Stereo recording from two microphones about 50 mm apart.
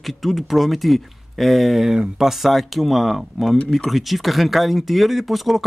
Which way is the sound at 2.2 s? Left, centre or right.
Centre.